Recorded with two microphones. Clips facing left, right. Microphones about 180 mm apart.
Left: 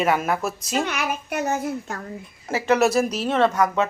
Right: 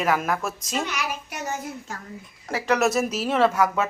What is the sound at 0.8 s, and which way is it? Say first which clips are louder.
A child's voice: left 4 dB; 55° left (ahead or behind).